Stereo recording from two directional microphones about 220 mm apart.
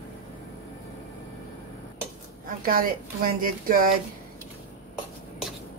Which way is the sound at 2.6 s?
40° right (ahead or behind).